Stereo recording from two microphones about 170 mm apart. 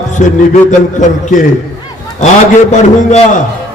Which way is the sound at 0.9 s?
45° left (ahead or behind).